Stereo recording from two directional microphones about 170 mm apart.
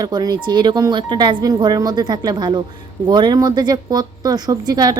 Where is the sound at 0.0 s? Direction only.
20° right (ahead or behind).